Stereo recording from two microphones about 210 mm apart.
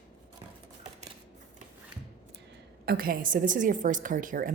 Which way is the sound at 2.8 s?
45° right (ahead or behind).